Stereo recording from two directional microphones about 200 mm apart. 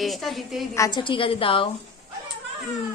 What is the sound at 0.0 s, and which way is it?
Speech, centre (ahead or behind).